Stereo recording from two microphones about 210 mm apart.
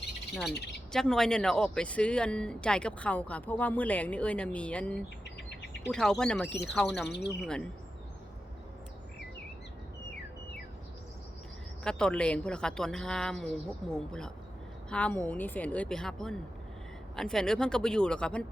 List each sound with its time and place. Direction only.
0.9 s speech: centre (ahead or behind)
7.1 s speech: 55° left (ahead or behind)
7.4 s speech: 5° left (ahead or behind)
11.8 s speech: 5° left (ahead or behind)